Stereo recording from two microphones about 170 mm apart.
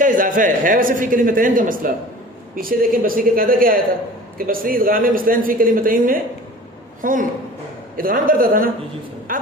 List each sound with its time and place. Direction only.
0.0 s a man's voice: 50° right (ahead or behind)